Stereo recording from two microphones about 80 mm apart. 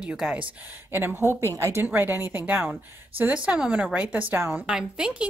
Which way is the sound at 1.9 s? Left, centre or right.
Right.